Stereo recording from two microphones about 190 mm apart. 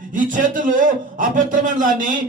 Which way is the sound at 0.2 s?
45° right (ahead or behind).